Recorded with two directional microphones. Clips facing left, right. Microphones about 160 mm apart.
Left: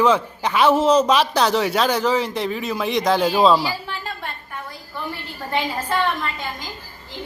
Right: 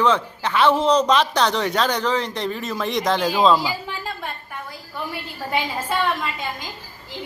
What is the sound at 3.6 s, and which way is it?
Speech, 15° right (ahead or behind).